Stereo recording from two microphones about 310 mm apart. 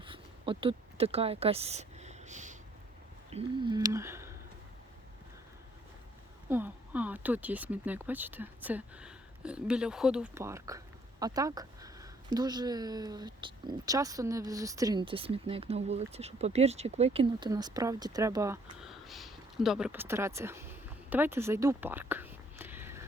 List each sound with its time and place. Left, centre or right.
0.0 s a sound: centre
3.3 s speech: centre
6.5 s speech: centre
21.1 s whispering: centre